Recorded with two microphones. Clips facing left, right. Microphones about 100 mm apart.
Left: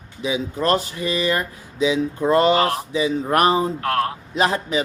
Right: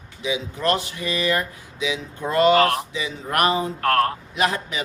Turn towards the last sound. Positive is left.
turn(degrees=30)  # may be behind; listen again after turning